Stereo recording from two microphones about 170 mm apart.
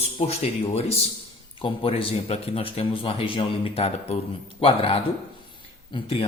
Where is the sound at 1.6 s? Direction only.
30° left (ahead or behind).